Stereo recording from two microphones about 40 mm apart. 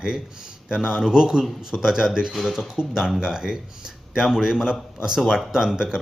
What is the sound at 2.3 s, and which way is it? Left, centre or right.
Speech, centre.